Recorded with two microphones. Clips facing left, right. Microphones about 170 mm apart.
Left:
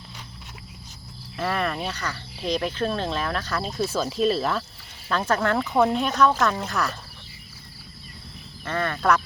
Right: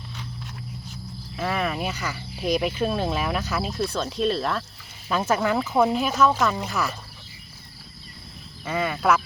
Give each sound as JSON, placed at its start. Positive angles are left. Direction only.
{"t": 1.4, "sound": "speech", "side_deg": 0}
{"t": 3.8, "sound": "speech", "side_deg": 5}
{"t": 5.0, "sound": "speech", "side_deg": -10}
{"t": 8.6, "sound": "speech", "side_deg": -10}